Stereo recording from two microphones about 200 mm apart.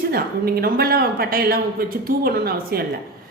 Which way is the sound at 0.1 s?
50° right (ahead or behind).